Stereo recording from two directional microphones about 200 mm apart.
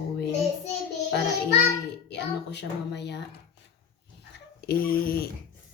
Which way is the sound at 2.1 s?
60° left (ahead or behind).